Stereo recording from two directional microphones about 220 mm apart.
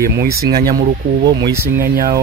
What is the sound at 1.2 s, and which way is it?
Speech, 20° right (ahead or behind).